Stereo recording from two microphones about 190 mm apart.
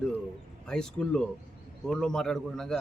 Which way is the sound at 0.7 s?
5° left (ahead or behind).